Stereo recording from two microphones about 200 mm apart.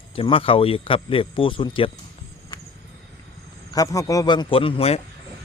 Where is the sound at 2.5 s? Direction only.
20° left (ahead or behind).